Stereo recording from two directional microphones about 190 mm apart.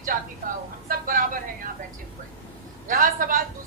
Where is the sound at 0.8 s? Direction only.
50° right (ahead or behind).